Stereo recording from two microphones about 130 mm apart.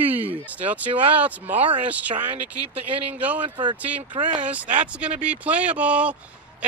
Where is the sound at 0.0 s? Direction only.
15° right (ahead or behind).